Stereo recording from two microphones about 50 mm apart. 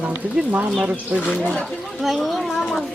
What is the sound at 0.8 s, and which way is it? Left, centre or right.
Speech, right.